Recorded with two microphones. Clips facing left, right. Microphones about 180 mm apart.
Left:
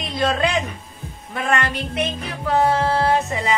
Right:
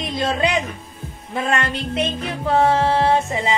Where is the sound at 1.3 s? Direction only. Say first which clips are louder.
Even; 25° right (ahead or behind).